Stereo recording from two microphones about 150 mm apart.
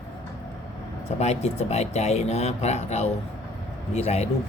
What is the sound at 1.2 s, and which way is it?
Speech, 45° left (ahead or behind).